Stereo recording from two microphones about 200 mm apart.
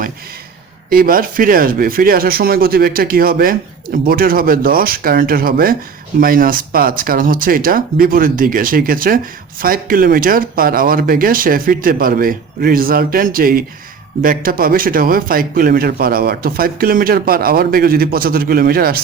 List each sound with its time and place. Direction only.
0.9 s speech: 45° right (ahead or behind)